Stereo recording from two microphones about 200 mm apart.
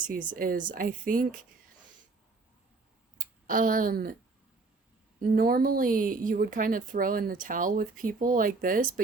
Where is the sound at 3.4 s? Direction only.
45° right (ahead or behind).